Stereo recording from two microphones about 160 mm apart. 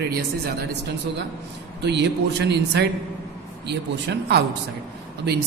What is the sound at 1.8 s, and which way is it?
A man's voice, 90° right.